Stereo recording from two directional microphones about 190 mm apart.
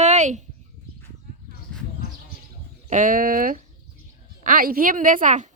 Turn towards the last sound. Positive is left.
turn(degrees=-40)  # may be behind; listen again after turning